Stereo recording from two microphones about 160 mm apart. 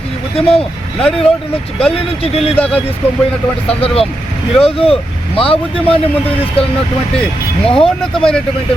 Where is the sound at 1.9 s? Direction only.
35° left (ahead or behind).